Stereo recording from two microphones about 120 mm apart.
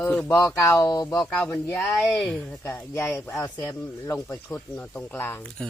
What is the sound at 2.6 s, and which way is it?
Speech, 20° left (ahead or behind).